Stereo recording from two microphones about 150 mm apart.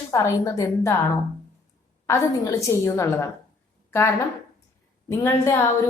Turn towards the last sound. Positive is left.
turn(degrees=15)  # may be behind; listen again after turning